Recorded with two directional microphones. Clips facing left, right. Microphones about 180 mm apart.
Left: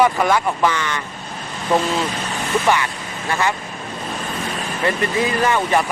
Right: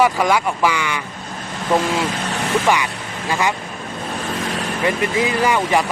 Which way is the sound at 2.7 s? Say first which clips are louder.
Even; 15° right (ahead or behind).